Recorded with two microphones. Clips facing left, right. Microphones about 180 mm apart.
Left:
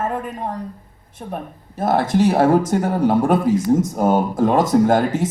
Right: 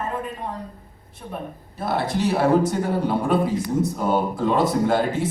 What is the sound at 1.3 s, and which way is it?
Speech, 45° left (ahead or behind).